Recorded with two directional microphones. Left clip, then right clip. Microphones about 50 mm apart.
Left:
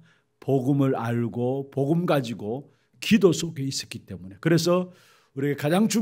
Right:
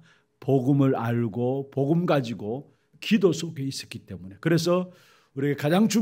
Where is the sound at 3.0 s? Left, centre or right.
Left.